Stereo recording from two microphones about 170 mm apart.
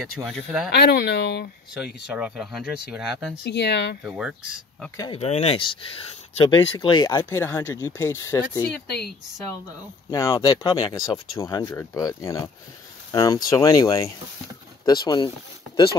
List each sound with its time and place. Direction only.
0.2 s speech: centre (ahead or behind)
0.7 s speech: 75° left (ahead or behind)
2.0 s speech: 5° right (ahead or behind)
3.4 s speech: 80° left
4.0 s speech: 5° right (ahead or behind)
4.9 s speech: 25° left (ahead or behind)
5.2 s speech: 35° left (ahead or behind)
7.1 s speech: 15° left (ahead or behind)
10.1 s speech: 20° left (ahead or behind)